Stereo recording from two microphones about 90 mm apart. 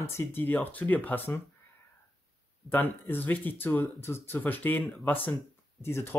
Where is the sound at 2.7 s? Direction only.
25° left (ahead or behind).